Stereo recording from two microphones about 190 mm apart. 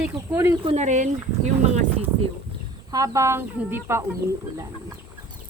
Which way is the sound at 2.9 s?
20° right (ahead or behind).